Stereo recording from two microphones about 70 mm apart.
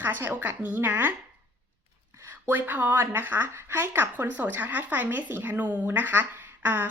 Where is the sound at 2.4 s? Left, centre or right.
Right.